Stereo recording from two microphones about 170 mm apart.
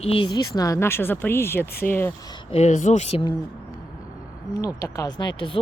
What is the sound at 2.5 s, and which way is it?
Speech, 45° left (ahead or behind).